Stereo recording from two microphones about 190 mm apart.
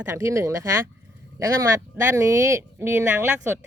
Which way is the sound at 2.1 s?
15° right (ahead or behind).